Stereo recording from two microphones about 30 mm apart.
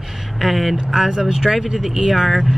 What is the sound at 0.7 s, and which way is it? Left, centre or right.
Speech, centre.